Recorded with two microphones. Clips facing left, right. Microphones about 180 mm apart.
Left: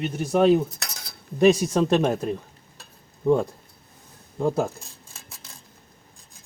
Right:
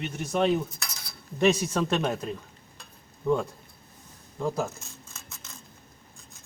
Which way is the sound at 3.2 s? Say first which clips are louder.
Left 5 dB; 35° left (ahead or behind).